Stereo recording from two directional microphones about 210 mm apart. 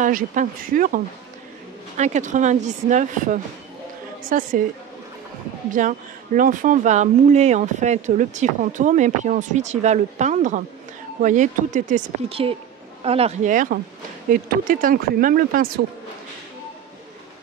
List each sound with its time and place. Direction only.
0.0 s speech: 40° right (ahead or behind)
5.7 s speech: 40° right (ahead or behind)